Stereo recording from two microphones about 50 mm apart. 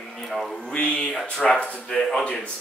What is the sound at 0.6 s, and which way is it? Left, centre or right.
Speech, centre.